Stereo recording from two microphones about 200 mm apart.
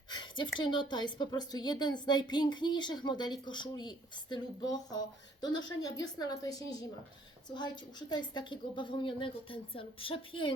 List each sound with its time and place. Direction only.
0.1 s a woman's voice: 25° left (ahead or behind)